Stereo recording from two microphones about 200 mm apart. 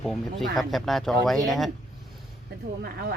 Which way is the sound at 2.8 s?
50° right (ahead or behind).